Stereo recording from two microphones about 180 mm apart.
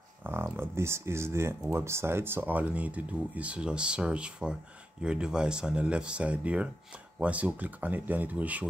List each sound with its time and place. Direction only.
0.2 s speech: 10° right (ahead or behind)